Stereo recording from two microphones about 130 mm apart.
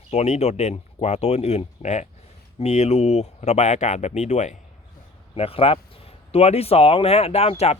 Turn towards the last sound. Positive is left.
turn(degrees=55)  # may be behind; listen again after turning